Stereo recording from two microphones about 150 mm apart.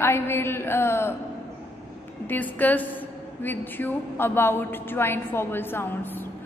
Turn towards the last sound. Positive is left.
turn(degrees=15)  # may be behind; listen again after turning